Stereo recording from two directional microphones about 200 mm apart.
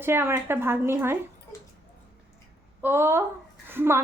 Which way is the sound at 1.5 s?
15° left (ahead or behind).